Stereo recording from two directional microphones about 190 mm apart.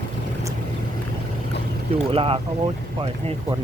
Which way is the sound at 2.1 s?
30° right (ahead or behind).